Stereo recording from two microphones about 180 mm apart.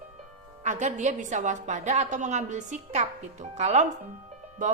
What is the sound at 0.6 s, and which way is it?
A woman's voice, 40° right (ahead or behind).